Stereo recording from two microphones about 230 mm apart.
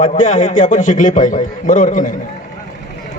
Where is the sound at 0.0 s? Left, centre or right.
Left.